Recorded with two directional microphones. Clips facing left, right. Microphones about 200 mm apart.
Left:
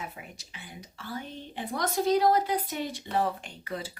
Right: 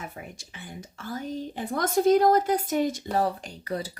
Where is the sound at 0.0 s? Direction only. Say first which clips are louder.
Right 2 dB; 45° right (ahead or behind).